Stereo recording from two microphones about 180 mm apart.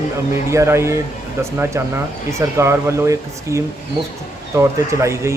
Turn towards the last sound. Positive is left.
turn(degrees=-15)  # may be behind; listen again after turning